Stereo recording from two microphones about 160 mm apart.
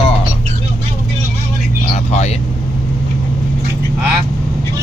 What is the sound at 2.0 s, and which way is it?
Speech, 45° left (ahead or behind).